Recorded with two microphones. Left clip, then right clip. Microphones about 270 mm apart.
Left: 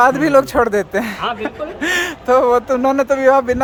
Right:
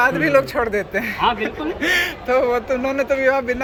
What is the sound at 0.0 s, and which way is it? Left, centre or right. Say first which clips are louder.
A man's voice: left 4 dB; left.